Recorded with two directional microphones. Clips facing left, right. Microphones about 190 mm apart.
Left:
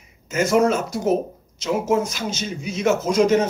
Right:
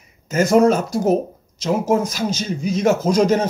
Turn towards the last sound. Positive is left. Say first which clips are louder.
# right 1 dB
turn(degrees=-35)  # may be behind; listen again after turning